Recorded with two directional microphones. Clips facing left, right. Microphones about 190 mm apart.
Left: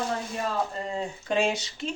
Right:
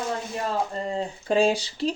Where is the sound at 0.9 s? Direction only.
35° right (ahead or behind).